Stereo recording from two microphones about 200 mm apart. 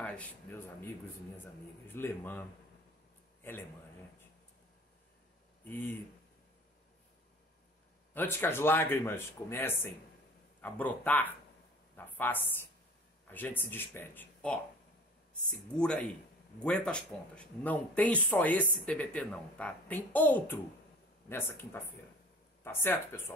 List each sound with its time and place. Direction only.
0.0 s speech: 5° left (ahead or behind)
5.6 s speech: 10° left (ahead or behind)
8.1 s speech: 10° left (ahead or behind)
15.7 s speech: 5° left (ahead or behind)